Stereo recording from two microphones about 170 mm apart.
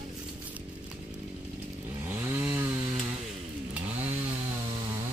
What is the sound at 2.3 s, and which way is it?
Chainsaw, 15° right (ahead or behind).